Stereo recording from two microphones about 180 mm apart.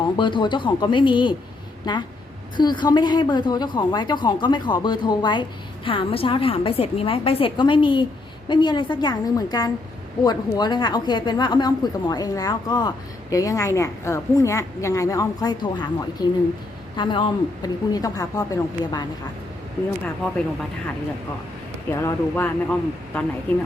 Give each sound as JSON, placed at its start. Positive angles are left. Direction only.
{"t": 0.2, "sound": "a woman's voice", "side_deg": 25}
{"t": 21.9, "sound": "a woman's voice", "side_deg": 15}